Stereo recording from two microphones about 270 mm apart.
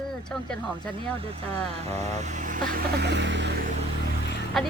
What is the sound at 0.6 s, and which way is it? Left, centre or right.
Speech, centre.